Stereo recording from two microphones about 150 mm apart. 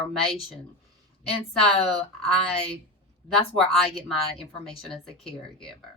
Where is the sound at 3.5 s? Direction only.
Centre (ahead or behind).